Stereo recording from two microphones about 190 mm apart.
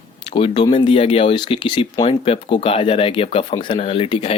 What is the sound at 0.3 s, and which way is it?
Speech, 25° left (ahead or behind).